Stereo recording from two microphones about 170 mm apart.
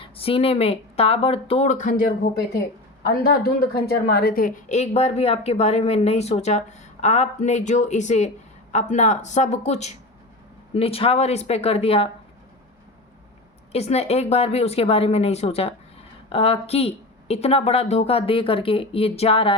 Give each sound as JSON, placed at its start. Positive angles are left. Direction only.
{"t": 0.0, "sound": "speech", "side_deg": 35}
{"t": 3.4, "sound": "a woman's voice", "side_deg": 65}
{"t": 13.7, "sound": "speech", "side_deg": 40}